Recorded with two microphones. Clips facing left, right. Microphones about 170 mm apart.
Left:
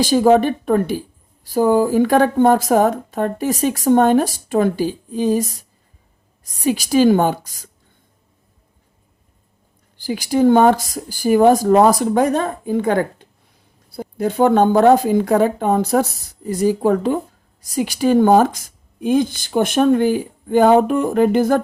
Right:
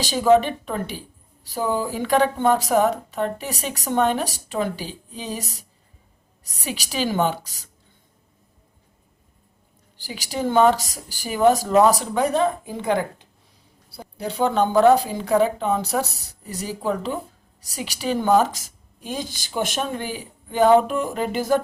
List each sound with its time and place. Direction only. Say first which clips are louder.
0.0 s speech: left 4 dB; 50° left (ahead or behind)
10.1 s speech: left 11 dB; 50° left (ahead or behind)